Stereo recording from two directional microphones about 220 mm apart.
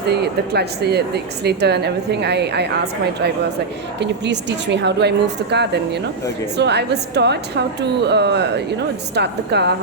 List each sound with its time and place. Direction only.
0.1 s a woman's voice: 50° right (ahead or behind)